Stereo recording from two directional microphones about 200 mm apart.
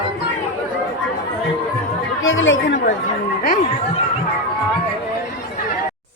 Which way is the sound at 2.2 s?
75° left (ahead or behind).